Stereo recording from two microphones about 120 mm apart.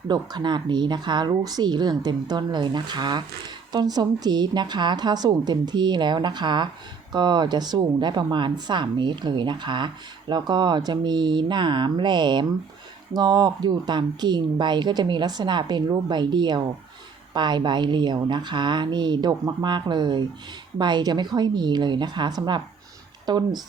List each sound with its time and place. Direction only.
0.1 s speech: 35° right (ahead or behind)